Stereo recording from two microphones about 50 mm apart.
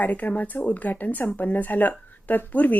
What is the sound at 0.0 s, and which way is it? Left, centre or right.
A woman's voice, left.